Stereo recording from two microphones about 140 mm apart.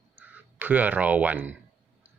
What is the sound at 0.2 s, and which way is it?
Speech, 10° right (ahead or behind).